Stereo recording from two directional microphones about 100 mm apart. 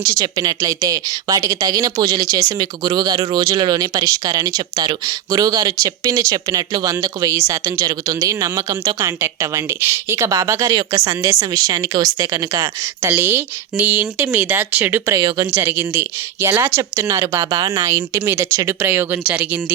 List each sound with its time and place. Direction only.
0.0 s speech: 40° right (ahead or behind)
11.5 s a woman's voice: 40° right (ahead or behind); by 15.1 s 20° right (ahead or behind)
15.1 s speech: 40° right (ahead or behind)
15.4 s a woman's voice: 25° right (ahead or behind)